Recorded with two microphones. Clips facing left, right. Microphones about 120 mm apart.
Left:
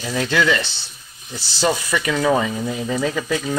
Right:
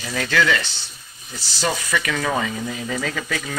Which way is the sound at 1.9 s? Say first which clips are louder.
Left 5 dB; 15° left (ahead or behind).